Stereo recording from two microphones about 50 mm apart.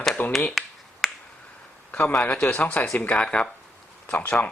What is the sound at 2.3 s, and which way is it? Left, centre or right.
Speech, left.